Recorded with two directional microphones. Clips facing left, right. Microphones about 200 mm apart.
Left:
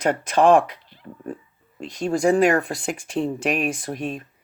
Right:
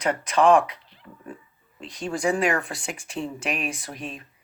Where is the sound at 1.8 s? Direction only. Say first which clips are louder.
Left 6 dB; 45° left (ahead or behind).